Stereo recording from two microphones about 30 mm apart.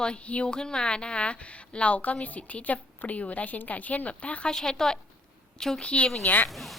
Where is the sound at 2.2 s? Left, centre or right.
Left.